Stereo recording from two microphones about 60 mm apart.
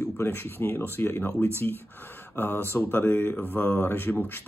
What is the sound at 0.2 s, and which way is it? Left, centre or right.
Speech, left.